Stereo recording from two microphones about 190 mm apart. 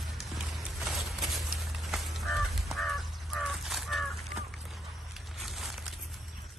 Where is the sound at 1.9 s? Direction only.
Centre (ahead or behind).